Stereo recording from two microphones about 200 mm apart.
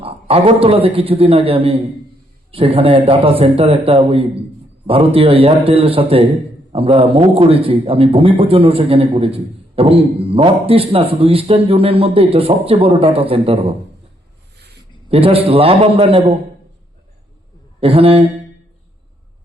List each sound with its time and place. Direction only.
0.0 s a man's voice: 30° right (ahead or behind)
15.1 s a man's voice: 30° right (ahead or behind)
17.7 s a man's voice: 30° right (ahead or behind)